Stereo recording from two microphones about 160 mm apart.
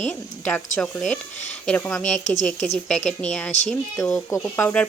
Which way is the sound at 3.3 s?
10° left (ahead or behind).